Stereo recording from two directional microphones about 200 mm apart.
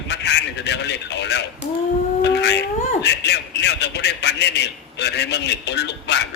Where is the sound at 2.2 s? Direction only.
60° left (ahead or behind).